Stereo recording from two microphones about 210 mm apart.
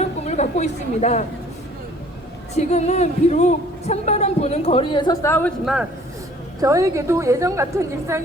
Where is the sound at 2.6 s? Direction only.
35° left (ahead or behind); by 5.5 s 10° left (ahead or behind).